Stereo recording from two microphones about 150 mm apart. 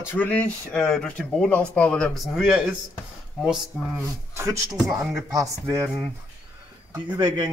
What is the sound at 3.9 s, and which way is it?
Speech, 20° right (ahead or behind).